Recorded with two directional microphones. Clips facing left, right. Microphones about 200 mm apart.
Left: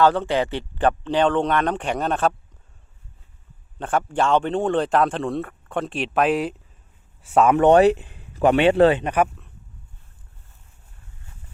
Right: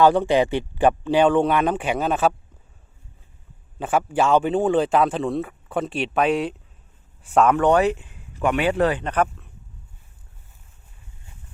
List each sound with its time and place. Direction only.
0.0 s speech: 15° right (ahead or behind)
3.8 s a man's voice: 5° right (ahead or behind)
7.5 s speech: 25° left (ahead or behind)
9.0 s speech: 10° left (ahead or behind)